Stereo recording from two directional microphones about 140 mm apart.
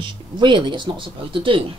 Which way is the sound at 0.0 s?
35° right (ahead or behind).